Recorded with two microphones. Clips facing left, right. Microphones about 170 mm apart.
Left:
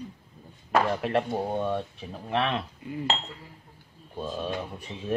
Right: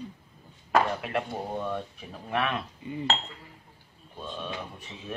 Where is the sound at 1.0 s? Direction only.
30° left (ahead or behind).